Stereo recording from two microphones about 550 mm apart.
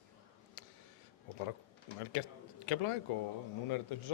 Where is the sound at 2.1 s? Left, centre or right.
Left.